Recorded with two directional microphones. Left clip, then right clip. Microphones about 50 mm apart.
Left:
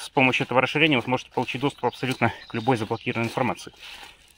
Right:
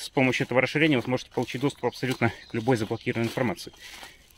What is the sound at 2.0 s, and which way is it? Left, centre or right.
Speech, left.